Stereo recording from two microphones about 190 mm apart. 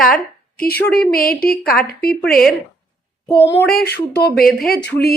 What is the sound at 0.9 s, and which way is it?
A woman's voice, 55° left (ahead or behind).